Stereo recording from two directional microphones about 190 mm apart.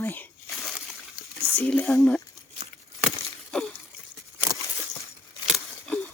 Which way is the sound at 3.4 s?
5° left (ahead or behind).